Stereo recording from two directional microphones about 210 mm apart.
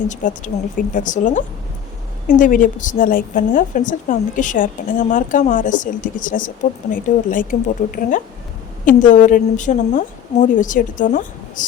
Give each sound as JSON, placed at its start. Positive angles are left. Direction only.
{"t": 0.1, "sound": "a woman's voice", "side_deg": 35}
{"t": 8.8, "sound": "a woman's voice", "side_deg": 40}